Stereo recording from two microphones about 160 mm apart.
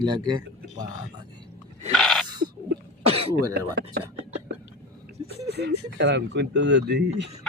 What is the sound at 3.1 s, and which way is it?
Throat clearing, 40° right (ahead or behind).